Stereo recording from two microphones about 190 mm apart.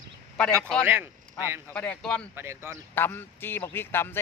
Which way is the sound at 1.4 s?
10° right (ahead or behind).